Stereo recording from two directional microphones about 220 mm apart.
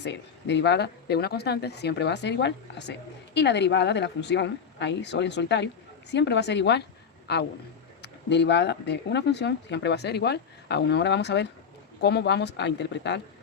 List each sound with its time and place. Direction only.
0.0 s speech: 50° left (ahead or behind)